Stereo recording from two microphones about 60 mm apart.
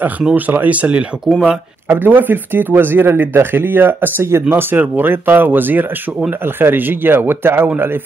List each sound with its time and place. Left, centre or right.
0.5 s speech: right
1.3 s speech: centre
1.9 s speech: right